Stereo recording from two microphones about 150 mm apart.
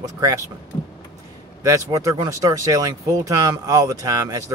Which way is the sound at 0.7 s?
30° left (ahead or behind).